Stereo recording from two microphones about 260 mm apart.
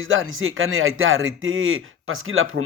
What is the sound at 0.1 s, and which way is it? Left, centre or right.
Speech, right.